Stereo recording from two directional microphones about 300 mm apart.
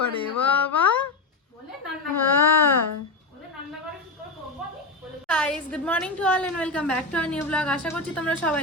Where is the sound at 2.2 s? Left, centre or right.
Centre.